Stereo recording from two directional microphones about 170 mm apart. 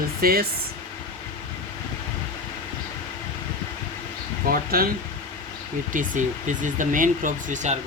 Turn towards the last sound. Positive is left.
turn(degrees=-45)  # may be behind; listen again after turning